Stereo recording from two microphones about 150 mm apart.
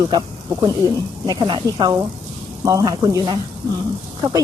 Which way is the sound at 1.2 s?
30° right (ahead or behind).